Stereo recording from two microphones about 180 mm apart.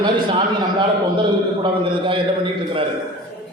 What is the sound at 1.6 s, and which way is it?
Speech, 30° right (ahead or behind).